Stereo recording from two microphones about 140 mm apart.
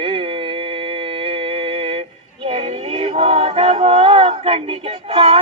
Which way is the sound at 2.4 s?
45° right (ahead or behind).